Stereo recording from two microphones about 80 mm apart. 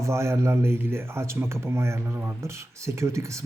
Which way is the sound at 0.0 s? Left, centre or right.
Right.